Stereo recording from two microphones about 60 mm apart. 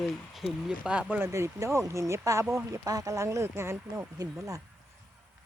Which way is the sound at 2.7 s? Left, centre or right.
Right.